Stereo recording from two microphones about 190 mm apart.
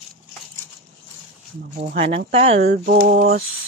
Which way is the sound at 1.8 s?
35° right (ahead or behind).